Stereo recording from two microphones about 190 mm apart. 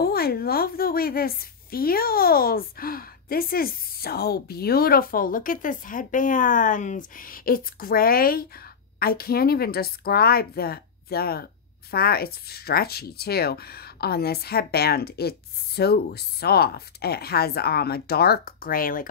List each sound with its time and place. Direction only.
0.0 s a woman's voice: 55° left (ahead or behind)